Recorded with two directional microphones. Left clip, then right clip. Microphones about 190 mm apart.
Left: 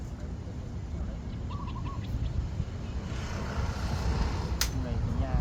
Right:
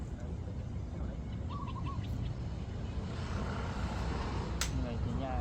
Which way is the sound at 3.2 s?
40° left (ahead or behind).